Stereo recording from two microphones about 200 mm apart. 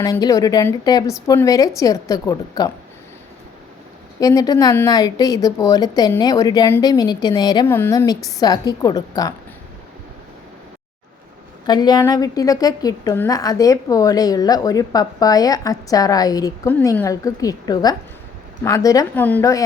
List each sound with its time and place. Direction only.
0.0 s a woman's voice: 20° left (ahead or behind)
4.2 s a woman's voice: 20° left (ahead or behind)
11.6 s a woman's voice: 20° left (ahead or behind)